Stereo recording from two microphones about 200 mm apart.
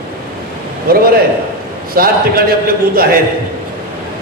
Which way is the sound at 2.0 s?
45° right (ahead or behind).